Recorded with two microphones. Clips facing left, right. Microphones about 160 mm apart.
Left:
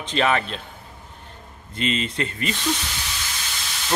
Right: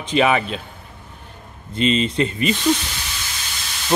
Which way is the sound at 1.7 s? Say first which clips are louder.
Right 6 dB; 20° right (ahead or behind).